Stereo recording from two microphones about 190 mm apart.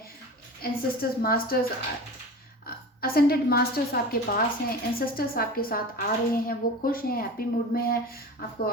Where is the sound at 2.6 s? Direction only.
50° left (ahead or behind).